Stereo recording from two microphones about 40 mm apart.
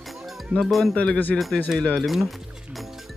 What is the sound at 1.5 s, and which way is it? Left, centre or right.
Speech, left.